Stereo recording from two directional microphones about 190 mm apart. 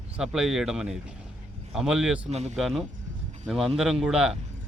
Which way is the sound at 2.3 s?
35° right (ahead or behind).